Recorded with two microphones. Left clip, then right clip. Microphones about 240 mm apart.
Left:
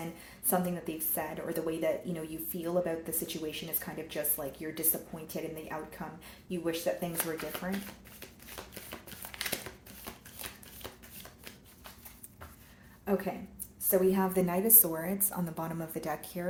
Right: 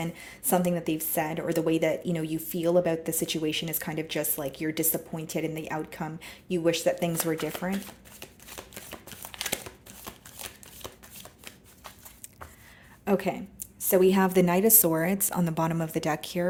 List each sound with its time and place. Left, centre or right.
0.5 s a woman's voice: right
8.7 s a sound: right
13.1 s a woman's voice: right